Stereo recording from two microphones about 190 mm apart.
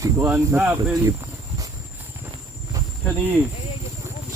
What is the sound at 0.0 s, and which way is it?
Speech, 10° right (ahead or behind).